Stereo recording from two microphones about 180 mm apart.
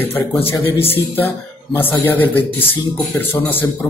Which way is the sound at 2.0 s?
10° left (ahead or behind).